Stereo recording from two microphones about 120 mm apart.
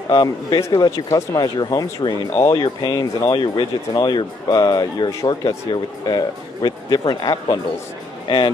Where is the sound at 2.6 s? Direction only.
35° left (ahead or behind).